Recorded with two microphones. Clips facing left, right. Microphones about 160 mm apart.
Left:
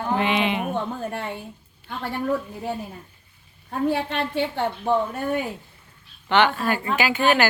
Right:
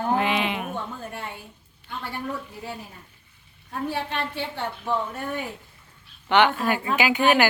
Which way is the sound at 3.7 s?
55° left (ahead or behind).